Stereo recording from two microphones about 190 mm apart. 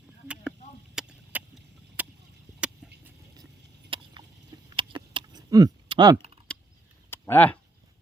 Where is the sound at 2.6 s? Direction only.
5° right (ahead or behind).